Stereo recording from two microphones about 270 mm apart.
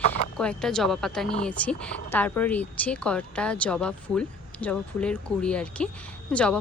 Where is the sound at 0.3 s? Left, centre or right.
Centre.